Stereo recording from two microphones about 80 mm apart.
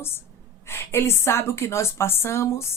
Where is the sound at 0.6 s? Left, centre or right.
Left.